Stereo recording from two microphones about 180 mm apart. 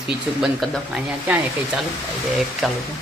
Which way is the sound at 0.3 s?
5° right (ahead or behind).